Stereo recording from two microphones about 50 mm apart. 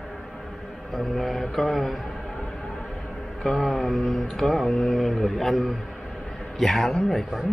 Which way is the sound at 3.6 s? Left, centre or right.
Centre.